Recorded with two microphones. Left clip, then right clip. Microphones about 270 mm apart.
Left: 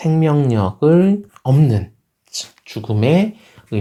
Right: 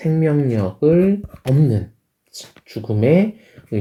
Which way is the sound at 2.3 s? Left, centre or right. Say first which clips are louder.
Left 5 dB; centre.